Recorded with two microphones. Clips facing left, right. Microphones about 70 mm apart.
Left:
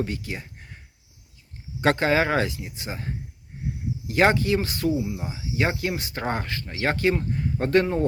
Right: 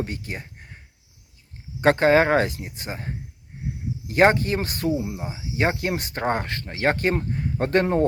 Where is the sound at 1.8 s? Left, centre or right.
Right.